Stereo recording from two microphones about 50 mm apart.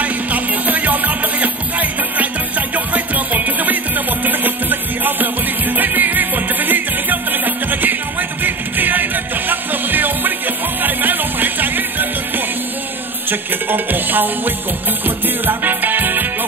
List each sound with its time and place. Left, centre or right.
0.0 s music: right